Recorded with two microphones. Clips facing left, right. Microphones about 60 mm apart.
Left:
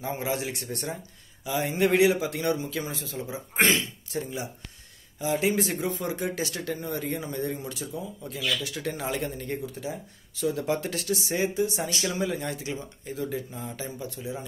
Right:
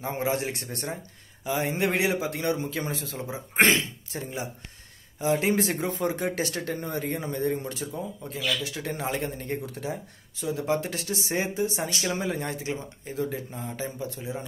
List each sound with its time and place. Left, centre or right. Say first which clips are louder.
0.0 s speech: right 2 dB; right
2.8 s speech: right 1 dB; right
5.9 s speech: right 2 dB; right
9.8 s speech: right 3 dB; right
10.3 s speech: even; right